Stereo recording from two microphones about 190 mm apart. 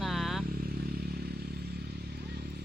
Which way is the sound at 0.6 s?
55° right (ahead or behind).